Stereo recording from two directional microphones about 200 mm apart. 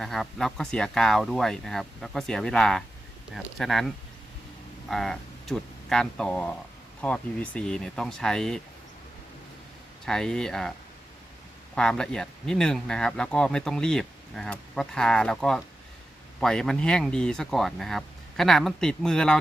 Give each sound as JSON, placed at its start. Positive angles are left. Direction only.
{"t": 0.0, "sound": "speech", "side_deg": 0}
{"t": 10.1, "sound": "speech", "side_deg": 5}
{"t": 11.7, "sound": "speech", "side_deg": 5}